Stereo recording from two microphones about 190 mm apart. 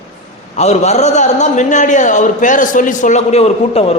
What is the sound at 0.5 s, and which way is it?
A man's voice, 35° left (ahead or behind).